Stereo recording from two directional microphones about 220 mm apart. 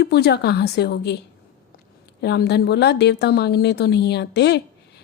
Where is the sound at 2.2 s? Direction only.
50° left (ahead or behind).